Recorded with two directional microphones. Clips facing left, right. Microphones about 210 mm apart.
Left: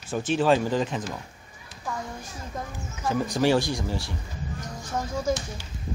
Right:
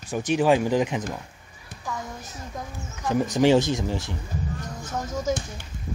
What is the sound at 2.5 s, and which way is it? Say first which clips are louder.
Speech: left 1 dB; 10° left (ahead or behind).